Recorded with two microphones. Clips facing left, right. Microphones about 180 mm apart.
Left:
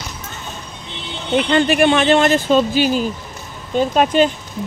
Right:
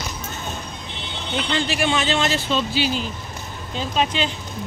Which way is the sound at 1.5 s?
60° left (ahead or behind).